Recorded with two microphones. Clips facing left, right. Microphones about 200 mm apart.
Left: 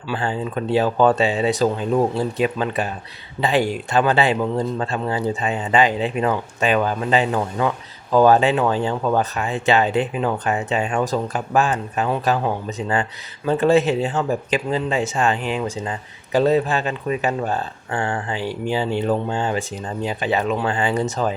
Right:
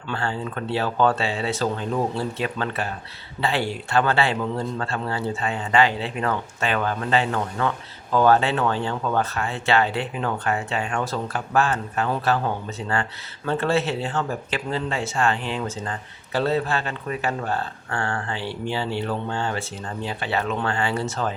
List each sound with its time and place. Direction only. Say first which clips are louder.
0.1 s speech: left 4 dB; 15° left (ahead or behind)